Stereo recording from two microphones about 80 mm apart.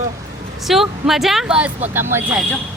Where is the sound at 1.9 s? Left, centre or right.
Right.